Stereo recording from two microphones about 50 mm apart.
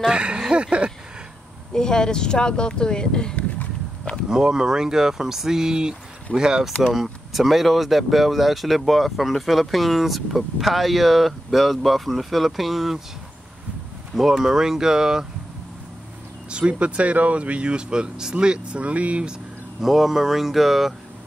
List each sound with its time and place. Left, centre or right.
0.0 s speech: centre
0.5 s a sound: right
1.7 s speech: centre
4.0 s a sound: centre
4.3 s speech: centre
6.9 s speech: centre
14.1 s speech: centre
16.4 s speech: right
19.8 s speech: centre